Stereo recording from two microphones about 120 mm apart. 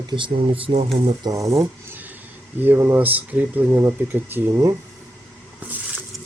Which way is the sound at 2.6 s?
15° right (ahead or behind).